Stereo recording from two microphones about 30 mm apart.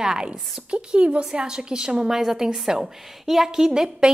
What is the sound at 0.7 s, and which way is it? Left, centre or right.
A woman's voice, right.